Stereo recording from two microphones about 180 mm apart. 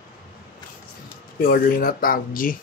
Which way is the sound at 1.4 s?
50° left (ahead or behind).